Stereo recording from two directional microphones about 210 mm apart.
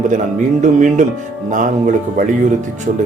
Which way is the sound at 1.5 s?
40° right (ahead or behind).